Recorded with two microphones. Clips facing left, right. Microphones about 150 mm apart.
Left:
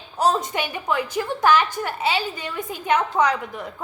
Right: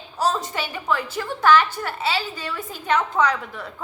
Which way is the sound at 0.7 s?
15° left (ahead or behind).